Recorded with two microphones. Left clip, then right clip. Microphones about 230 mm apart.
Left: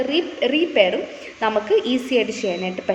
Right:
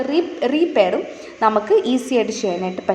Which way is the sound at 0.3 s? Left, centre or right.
Right.